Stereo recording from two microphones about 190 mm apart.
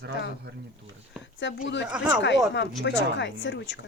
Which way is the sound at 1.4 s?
70° left (ahead or behind).